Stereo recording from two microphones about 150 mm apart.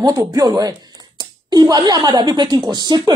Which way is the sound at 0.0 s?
25° right (ahead or behind).